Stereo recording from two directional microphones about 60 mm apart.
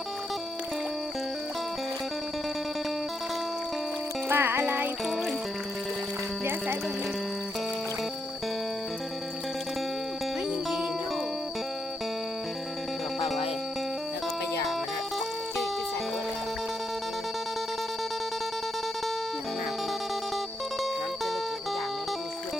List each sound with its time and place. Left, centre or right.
4.3 s music: right
13.1 s music: centre